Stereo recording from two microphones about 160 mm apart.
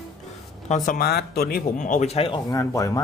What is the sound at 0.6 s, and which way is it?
Speech, 55° left (ahead or behind).